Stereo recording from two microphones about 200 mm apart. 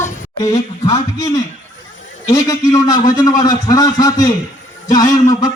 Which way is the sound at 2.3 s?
15° left (ahead or behind).